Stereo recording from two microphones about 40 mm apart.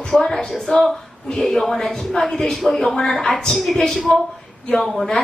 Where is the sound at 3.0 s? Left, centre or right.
Centre.